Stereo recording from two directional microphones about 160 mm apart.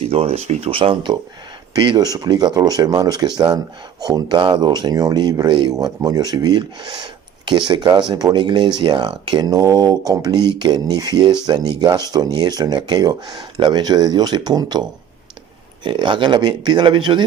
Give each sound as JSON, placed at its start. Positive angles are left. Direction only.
{"t": 0.0, "sound": "speech", "side_deg": -40}